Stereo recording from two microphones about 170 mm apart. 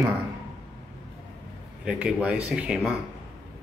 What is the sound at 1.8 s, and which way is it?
Speech, 5° right (ahead or behind).